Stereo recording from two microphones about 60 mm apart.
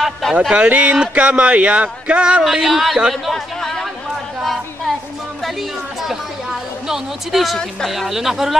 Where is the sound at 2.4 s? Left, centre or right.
Centre.